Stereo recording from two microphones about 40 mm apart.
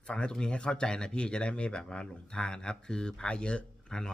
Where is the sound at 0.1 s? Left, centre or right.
Left.